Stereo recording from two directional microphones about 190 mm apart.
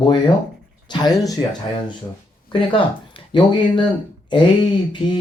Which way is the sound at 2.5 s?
25° left (ahead or behind).